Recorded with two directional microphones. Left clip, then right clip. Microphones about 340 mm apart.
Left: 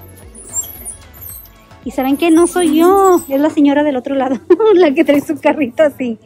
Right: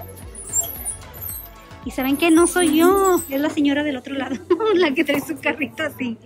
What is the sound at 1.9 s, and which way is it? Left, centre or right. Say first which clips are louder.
A woman's voice: left 5 dB; centre.